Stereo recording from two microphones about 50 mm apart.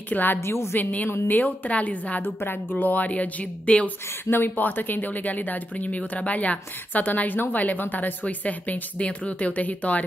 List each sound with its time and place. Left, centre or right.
0.1 s speech: left
4.3 s speech: left